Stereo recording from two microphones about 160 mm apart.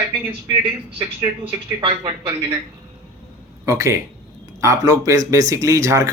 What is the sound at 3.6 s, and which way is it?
Speech, 20° right (ahead or behind).